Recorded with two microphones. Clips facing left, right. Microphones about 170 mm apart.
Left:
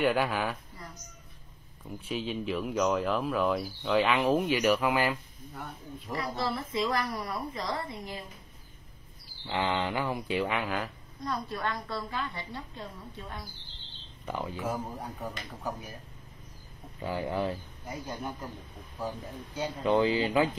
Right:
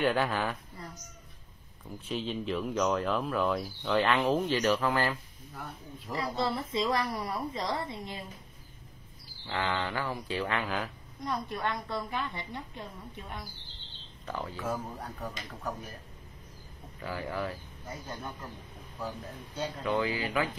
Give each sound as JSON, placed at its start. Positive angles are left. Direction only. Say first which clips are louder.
{"t": 0.0, "sound": "speech", "louder": "left 1 dB", "side_deg": 10}
{"t": 2.0, "sound": "speech", "louder": "left 1 dB", "side_deg": 5}
{"t": 5.5, "sound": "speech", "louder": "left 2 dB", "side_deg": 0}
{"t": 6.1, "sound": "a woman's voice", "louder": "right 1 dB", "side_deg": -25}
{"t": 9.5, "sound": "speech", "louder": "left 3 dB", "side_deg": 20}
{"t": 11.2, "sound": "a woman's voice", "louder": "even", "side_deg": -25}
{"t": 14.2, "sound": "speech", "louder": "left 2 dB", "side_deg": 15}
{"t": 17.0, "sound": "speech", "louder": "left 4 dB", "side_deg": 25}
{"t": 19.8, "sound": "speech", "louder": "left 6 dB", "side_deg": 25}